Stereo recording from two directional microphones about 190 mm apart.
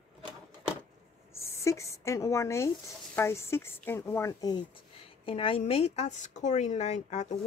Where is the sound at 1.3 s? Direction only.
15° left (ahead or behind).